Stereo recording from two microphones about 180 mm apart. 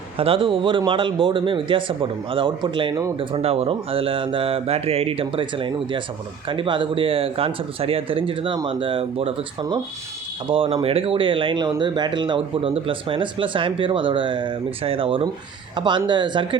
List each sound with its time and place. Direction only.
0.2 s speech: 30° right (ahead or behind)
10.5 s speech: 30° right (ahead or behind)